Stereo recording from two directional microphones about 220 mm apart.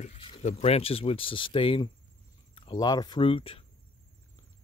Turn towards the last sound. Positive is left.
turn(degrees=25)  # may be behind; listen again after turning